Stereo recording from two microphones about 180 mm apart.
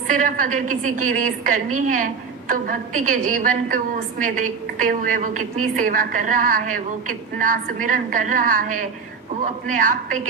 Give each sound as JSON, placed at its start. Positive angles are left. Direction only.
{"t": 0.1, "sound": "a woman's voice", "side_deg": -50}